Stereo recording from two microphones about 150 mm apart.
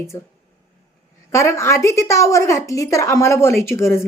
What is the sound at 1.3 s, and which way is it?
Speech, 20° left (ahead or behind).